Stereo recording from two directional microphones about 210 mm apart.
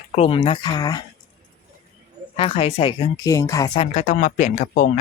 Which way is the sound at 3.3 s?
15° left (ahead or behind).